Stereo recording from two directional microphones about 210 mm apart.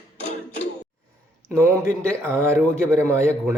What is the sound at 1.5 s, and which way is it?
A man's voice, 15° right (ahead or behind).